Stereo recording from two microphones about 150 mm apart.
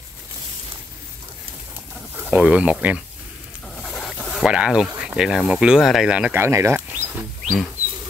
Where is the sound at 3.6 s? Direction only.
Centre (ahead or behind).